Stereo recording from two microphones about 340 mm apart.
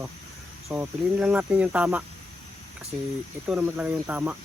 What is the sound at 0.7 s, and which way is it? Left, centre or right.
Speech, centre.